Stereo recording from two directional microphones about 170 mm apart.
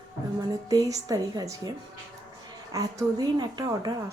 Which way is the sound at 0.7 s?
20° right (ahead or behind).